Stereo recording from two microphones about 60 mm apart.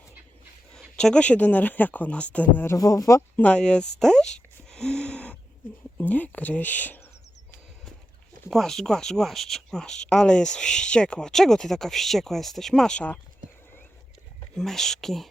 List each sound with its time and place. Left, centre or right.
0.7 s speech: centre
2.7 s speech: left
3.4 s speech: centre
6.0 s speech: left
8.4 s speech: centre
14.5 s speech: centre